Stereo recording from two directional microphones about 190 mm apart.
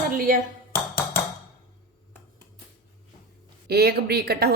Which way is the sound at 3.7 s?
55° right (ahead or behind).